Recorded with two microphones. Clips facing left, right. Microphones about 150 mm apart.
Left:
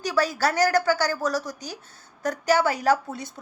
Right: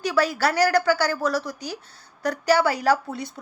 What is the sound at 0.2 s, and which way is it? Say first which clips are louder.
A woman's voice: right 1 dB; 40° left (ahead or behind).